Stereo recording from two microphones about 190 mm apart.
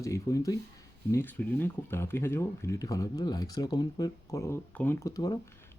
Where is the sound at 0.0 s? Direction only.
15° left (ahead or behind).